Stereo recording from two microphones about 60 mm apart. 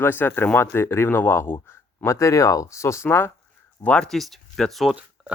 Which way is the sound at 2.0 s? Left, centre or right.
Left.